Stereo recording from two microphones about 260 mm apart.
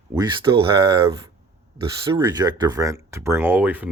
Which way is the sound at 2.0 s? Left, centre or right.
Centre.